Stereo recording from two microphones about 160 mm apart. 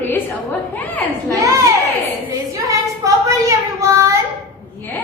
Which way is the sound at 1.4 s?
20° right (ahead or behind).